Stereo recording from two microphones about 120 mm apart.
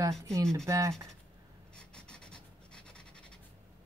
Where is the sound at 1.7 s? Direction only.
5° left (ahead or behind).